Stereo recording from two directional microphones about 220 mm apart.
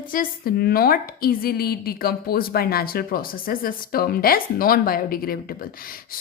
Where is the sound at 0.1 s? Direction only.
40° left (ahead or behind).